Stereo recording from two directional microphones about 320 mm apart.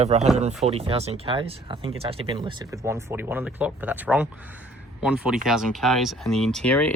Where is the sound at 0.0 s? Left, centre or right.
Centre.